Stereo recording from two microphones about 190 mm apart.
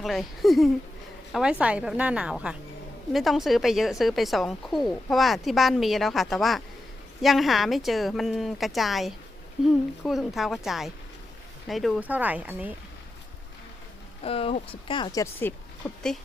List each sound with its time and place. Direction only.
0.0 s a woman's voice: centre (ahead or behind)
14.2 s speech: 30° left (ahead or behind); by 16.1 s 10° left (ahead or behind)